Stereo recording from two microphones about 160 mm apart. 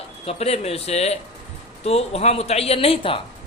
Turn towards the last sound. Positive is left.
turn(degrees=35)  # may be behind; listen again after turning